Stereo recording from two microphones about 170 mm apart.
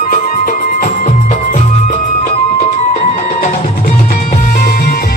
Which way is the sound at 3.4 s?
55° left (ahead or behind).